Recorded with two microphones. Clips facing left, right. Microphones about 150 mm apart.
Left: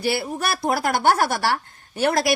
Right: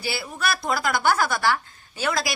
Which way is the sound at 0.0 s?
60° left (ahead or behind).